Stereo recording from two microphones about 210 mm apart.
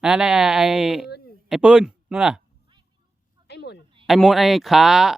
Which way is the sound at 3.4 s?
55° left (ahead or behind).